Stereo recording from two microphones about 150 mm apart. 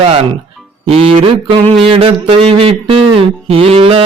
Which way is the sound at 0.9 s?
40° right (ahead or behind).